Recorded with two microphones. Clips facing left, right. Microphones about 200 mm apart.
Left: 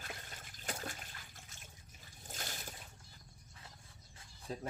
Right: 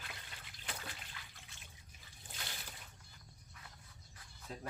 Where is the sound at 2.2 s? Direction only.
45° left (ahead or behind).